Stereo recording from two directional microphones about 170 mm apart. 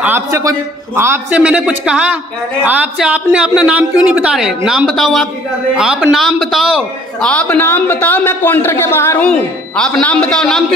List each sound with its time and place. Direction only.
0.0 s a man's voice: 15° right (ahead or behind); by 9.3 s 15° left (ahead or behind)
9.3 s a woman's voice: 5° left (ahead or behind)